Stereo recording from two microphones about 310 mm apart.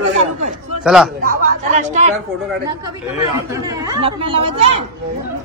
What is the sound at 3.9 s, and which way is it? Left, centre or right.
Speech, centre.